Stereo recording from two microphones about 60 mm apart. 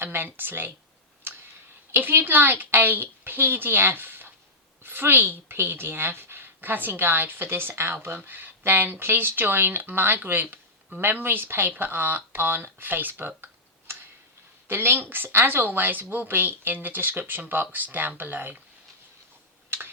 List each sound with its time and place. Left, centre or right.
0.0 s speech: right
1.3 s a sound: right
1.9 s a woman's voice: right